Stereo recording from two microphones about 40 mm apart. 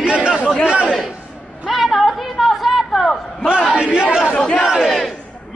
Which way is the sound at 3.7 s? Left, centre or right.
Right.